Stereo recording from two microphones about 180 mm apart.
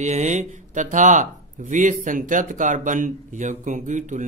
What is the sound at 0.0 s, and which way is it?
Speech, 40° right (ahead or behind).